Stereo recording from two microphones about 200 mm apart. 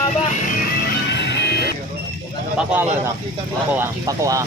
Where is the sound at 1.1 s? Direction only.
60° left (ahead or behind).